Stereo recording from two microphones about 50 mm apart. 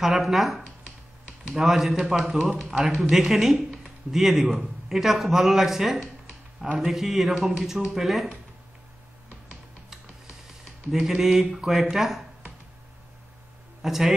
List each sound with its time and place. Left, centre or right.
0.0 s a man's voice: centre
9.8 s a sound: centre
13.8 s speech: centre